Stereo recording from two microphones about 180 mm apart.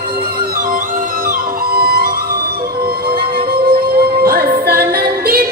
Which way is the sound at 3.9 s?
60° right (ahead or behind).